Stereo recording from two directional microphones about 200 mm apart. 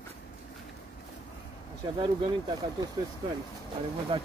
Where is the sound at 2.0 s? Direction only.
20° right (ahead or behind).